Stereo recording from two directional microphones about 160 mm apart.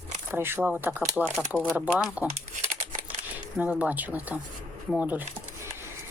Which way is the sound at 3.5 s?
5° right (ahead or behind).